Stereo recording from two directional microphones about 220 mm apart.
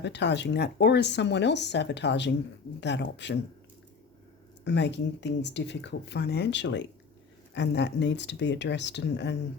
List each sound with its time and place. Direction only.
0.0 s speech: 50° left (ahead or behind)
4.6 s speech: 50° left (ahead or behind)